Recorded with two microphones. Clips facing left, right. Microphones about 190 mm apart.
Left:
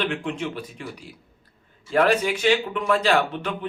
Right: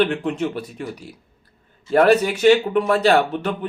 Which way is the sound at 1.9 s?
40° right (ahead or behind).